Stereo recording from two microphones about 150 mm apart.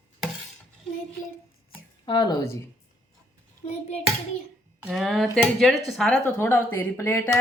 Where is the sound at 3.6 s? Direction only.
45° left (ahead or behind).